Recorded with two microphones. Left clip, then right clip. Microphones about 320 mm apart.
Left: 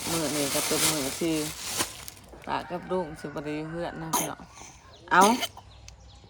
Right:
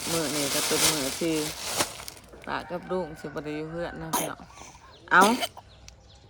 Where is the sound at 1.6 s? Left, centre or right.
Right.